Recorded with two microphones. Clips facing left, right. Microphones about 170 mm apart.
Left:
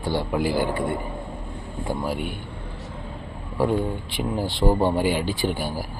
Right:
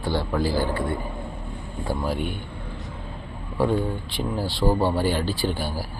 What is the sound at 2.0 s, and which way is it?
Speech, 10° left (ahead or behind).